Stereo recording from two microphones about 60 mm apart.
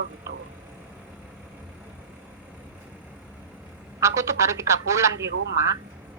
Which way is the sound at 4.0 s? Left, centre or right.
Right.